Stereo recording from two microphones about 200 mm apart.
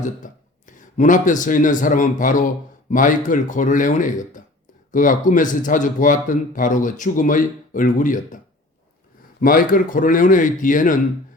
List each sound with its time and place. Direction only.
0.0 s speech: 40° left (ahead or behind)
9.4 s speech: 45° left (ahead or behind)